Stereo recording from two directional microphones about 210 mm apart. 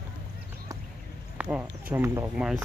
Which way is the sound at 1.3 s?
5° right (ahead or behind).